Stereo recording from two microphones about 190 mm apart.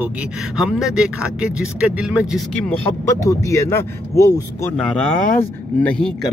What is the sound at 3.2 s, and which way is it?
A man's voice, 15° left (ahead or behind).